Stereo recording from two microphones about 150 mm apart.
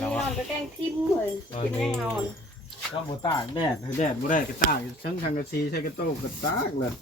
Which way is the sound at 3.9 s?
65° left (ahead or behind).